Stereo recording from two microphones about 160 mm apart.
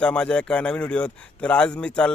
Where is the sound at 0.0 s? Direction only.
5° left (ahead or behind).